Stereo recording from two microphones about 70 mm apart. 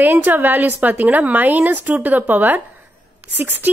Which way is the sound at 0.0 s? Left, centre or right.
Right.